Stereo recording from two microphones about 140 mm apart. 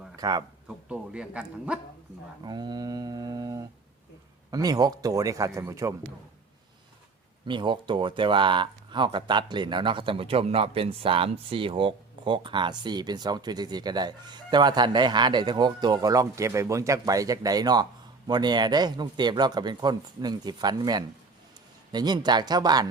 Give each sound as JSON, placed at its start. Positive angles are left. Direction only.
{"t": 0.2, "sound": "speech", "side_deg": -30}
{"t": 0.9, "sound": "a man's voice", "side_deg": -10}
{"t": 2.4, "sound": "mantra", "side_deg": -30}
{"t": 4.5, "sound": "speech", "side_deg": -25}
{"t": 7.4, "sound": "speech", "side_deg": -35}